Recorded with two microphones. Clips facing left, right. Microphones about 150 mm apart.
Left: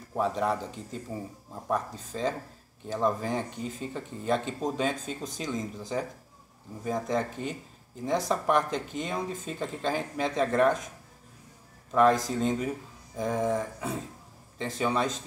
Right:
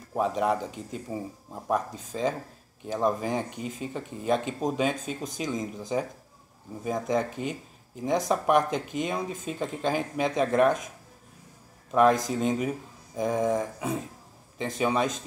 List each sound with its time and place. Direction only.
0.1 s speech: 15° right (ahead or behind)
11.9 s speech: 15° right (ahead or behind)